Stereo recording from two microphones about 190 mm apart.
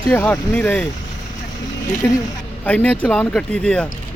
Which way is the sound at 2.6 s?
5° left (ahead or behind).